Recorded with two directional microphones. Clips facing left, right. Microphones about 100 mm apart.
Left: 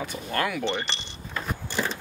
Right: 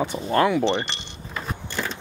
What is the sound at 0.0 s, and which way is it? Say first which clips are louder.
Speech: right 8 dB; 25° right (ahead or behind).